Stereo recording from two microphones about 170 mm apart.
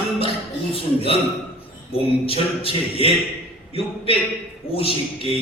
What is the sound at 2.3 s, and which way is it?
Speech, 35° left (ahead or behind).